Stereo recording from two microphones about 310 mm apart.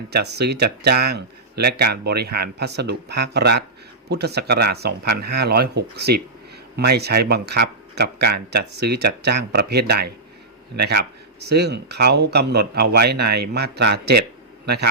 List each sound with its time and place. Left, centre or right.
0.1 s speech: right